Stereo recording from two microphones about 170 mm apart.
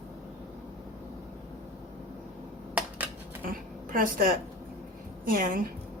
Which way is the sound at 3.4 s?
55° right (ahead or behind).